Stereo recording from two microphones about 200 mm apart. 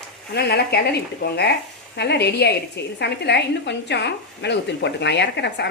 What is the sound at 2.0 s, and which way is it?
A woman's voice, 55° left (ahead or behind).